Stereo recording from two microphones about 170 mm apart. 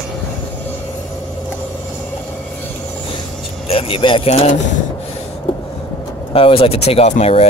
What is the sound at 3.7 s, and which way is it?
Speech, 35° left (ahead or behind).